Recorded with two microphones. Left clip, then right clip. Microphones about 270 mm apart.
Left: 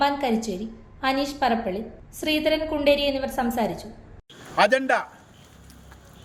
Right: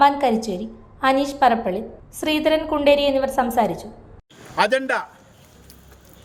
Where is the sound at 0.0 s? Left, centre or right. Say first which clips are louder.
Right 7 dB; centre.